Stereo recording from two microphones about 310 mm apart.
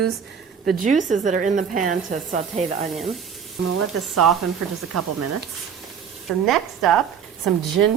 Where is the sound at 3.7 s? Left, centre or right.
Right.